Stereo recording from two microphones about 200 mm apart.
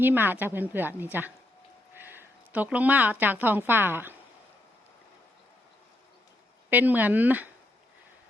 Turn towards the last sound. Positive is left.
turn(degrees=-10)  # may be behind; listen again after turning